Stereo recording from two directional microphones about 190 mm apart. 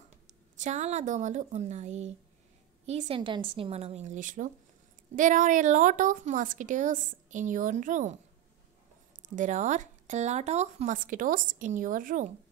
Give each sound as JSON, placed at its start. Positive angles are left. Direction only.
{"t": 0.6, "sound": "a woman's voice", "side_deg": -35}
{"t": 9.3, "sound": "speech", "side_deg": -40}